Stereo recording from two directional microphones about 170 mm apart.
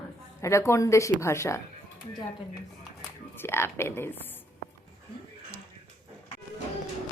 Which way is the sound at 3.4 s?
15° left (ahead or behind).